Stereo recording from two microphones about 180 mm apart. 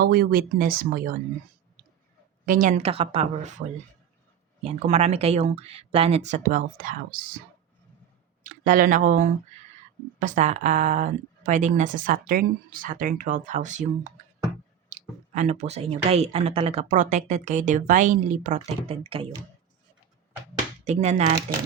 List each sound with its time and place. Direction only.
0.0 s speech: 60° right (ahead or behind)
2.5 s speech: 45° right (ahead or behind)
8.4 s speech: 50° right (ahead or behind); by 19.3 s 30° right (ahead or behind)
20.8 s speech: 40° right (ahead or behind)